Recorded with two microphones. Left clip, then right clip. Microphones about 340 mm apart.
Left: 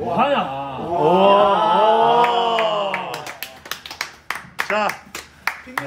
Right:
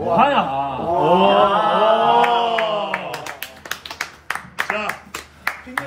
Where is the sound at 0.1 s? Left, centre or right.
Centre.